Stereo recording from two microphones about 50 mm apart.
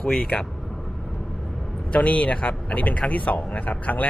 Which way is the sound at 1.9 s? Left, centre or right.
Left.